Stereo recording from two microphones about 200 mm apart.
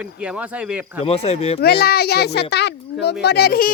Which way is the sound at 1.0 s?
30° left (ahead or behind).